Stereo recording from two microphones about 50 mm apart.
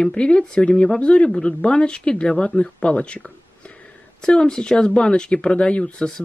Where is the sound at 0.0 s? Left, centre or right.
Centre.